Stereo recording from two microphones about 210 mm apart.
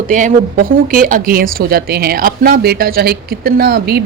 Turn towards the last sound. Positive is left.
turn(degrees=-50)  # may be behind; listen again after turning